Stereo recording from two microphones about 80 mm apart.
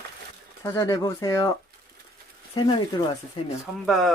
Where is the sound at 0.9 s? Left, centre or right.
Left.